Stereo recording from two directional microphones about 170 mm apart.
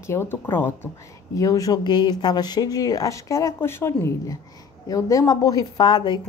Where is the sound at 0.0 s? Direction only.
15° left (ahead or behind).